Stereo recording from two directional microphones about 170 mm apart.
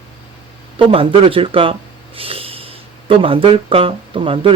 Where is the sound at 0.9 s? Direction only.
35° right (ahead or behind).